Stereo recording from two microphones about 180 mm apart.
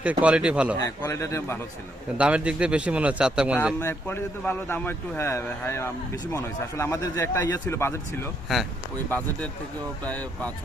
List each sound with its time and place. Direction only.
0.0 s a man's voice: 5° right (ahead or behind)
0.8 s speech: 15° left (ahead or behind)
2.1 s a man's voice: 5° right (ahead or behind)
3.8 s speech: 15° left (ahead or behind)
9.0 s speech: 10° left (ahead or behind)